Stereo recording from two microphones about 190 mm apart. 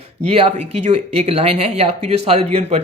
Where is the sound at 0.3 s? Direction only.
30° right (ahead or behind).